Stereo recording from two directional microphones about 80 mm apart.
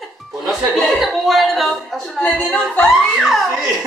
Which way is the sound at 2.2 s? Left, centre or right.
Centre.